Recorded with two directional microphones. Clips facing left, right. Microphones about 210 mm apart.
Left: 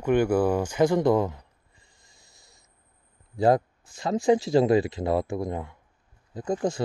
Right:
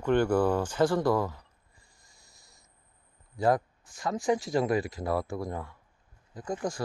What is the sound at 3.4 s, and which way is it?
Speech, 25° left (ahead or behind).